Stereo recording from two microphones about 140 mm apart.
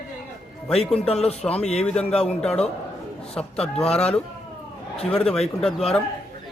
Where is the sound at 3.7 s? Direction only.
45° left (ahead or behind).